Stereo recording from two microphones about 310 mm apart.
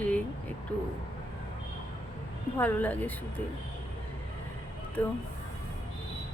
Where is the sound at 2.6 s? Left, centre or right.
Centre.